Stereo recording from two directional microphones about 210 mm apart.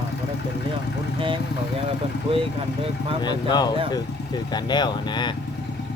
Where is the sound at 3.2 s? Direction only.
20° left (ahead or behind).